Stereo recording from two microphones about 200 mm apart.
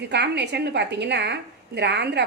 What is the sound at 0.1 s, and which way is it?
A woman's voice, 60° right (ahead or behind).